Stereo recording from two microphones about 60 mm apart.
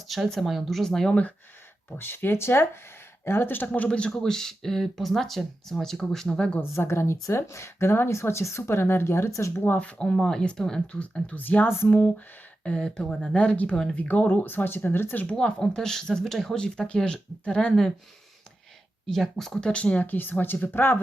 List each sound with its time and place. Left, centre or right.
0.3 s speech: centre
2.0 s speech: left
3.8 s speech: centre
6.6 s speech: left
9.6 s speech: left
10.2 s speech: centre
11.0 s speech: left
14.4 s speech: left
15.2 s speech: centre
19.0 s speech: centre
19.5 s speech: centre; by 21.0 s left